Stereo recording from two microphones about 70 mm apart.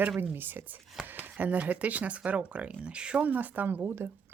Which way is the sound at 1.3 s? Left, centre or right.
Right.